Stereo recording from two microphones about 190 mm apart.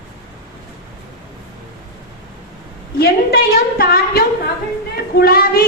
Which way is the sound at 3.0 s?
50° left (ahead or behind).